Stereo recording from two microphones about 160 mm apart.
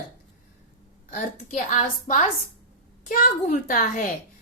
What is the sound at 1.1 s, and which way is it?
A woman's voice, 50° left (ahead or behind).